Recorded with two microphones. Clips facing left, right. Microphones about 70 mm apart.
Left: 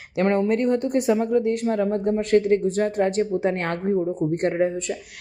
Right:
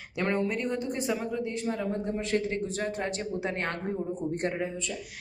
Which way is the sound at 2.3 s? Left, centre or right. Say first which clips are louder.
Left 12 dB; left.